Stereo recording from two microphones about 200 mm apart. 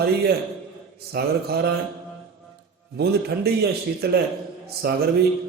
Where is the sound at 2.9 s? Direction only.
55° right (ahead or behind).